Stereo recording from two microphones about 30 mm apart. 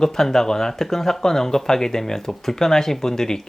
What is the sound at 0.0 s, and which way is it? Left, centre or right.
Speech, centre.